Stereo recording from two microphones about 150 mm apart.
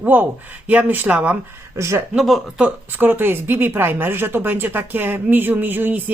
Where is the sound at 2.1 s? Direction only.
Centre (ahead or behind).